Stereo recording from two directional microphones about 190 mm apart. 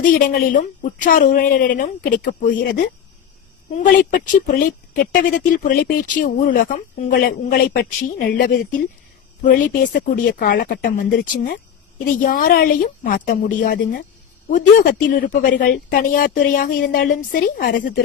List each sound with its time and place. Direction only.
0.0 s speech: 45° left (ahead or behind)
3.8 s speech: 45° left (ahead or behind)